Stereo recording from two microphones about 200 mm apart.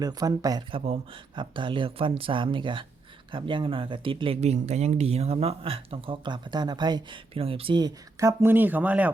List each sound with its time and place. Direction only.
0.0 s speech: 20° right (ahead or behind)